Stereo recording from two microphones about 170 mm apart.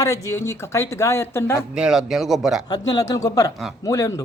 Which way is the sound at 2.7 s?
20° left (ahead or behind).